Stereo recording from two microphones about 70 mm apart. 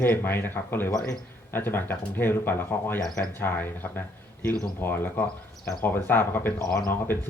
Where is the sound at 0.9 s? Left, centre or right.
Left.